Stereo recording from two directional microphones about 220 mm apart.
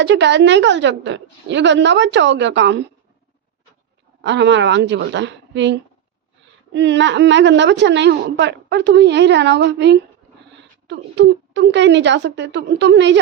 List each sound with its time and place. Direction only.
0.0 s a woman's voice: 55° right (ahead or behind)
4.2 s a woman's voice: 55° right (ahead or behind)